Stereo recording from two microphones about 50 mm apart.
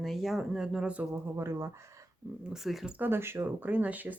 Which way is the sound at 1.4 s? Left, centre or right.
Right.